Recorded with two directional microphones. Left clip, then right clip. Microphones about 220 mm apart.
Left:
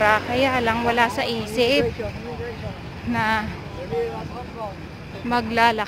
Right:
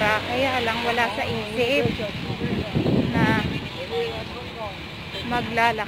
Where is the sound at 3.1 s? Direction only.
25° left (ahead or behind).